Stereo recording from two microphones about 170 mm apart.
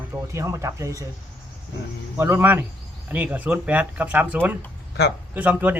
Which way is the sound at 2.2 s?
15° right (ahead or behind).